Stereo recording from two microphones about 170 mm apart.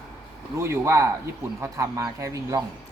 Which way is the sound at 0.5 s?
15° right (ahead or behind).